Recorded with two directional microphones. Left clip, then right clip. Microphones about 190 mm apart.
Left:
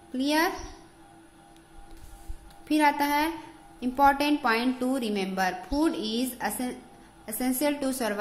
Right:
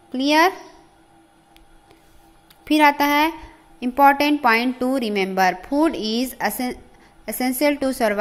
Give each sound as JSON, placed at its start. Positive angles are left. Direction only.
{"t": 0.1, "sound": "a woman's voice", "side_deg": -35}
{"t": 2.6, "sound": "a woman's voice", "side_deg": -35}